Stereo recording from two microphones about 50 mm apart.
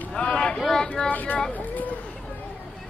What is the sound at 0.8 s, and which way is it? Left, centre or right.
Speech, centre.